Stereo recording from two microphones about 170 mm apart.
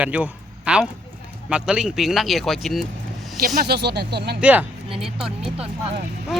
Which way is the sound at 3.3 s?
65° right (ahead or behind).